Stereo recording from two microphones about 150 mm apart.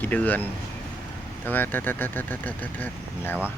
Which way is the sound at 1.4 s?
15° left (ahead or behind).